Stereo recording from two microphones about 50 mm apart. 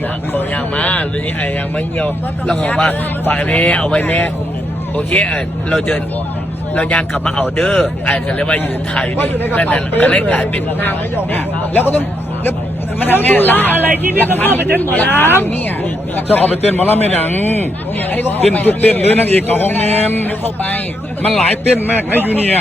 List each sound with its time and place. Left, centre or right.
0.3 s a man's voice: left
4.0 s a man's voice: left
9.1 s a man's voice: left
15.1 s speech: left
16.3 s a man's voice: left
21.8 s a man's voice: left